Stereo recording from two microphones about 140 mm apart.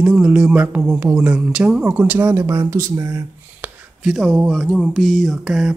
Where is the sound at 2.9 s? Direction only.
20° right (ahead or behind).